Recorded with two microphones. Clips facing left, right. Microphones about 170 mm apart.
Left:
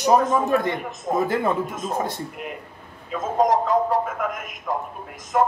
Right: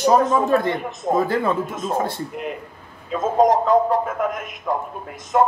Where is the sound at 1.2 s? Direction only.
20° left (ahead or behind).